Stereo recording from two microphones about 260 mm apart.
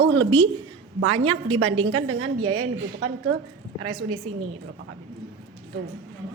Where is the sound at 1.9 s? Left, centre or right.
Right.